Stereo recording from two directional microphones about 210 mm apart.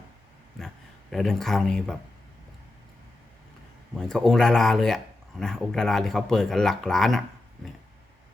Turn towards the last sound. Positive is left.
turn(degrees=0)  # may be behind; listen again after turning